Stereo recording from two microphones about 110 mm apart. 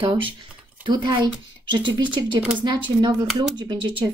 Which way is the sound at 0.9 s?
45° right (ahead or behind).